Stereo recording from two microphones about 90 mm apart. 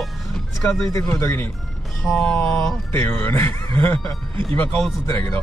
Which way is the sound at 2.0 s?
5° left (ahead or behind).